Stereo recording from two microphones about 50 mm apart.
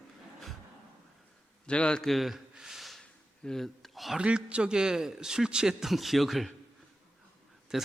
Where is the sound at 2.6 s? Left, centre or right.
Centre.